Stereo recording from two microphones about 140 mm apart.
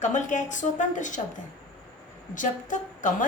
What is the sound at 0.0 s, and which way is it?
A woman's voice, 60° left (ahead or behind).